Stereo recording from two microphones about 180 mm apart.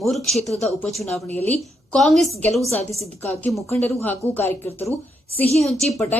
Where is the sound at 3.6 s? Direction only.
15° left (ahead or behind).